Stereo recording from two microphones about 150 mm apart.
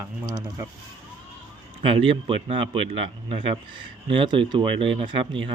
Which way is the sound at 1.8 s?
35° right (ahead or behind).